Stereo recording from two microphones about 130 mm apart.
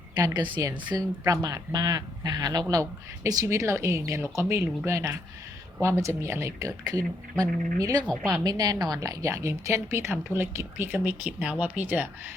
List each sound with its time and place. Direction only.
0.6 s speech: 30° right (ahead or behind)